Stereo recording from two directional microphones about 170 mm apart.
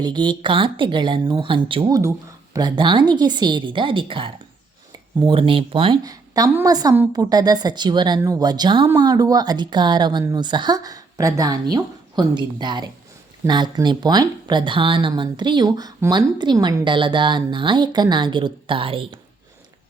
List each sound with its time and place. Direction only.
0.0 s speech: 25° right (ahead or behind)
2.0 s speech: 20° right (ahead or behind)